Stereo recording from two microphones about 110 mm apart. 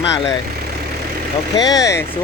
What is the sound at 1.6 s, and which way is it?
Speech, 35° left (ahead or behind).